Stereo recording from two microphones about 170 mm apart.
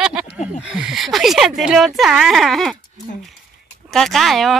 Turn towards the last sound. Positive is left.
turn(degrees=0)  # may be behind; listen again after turning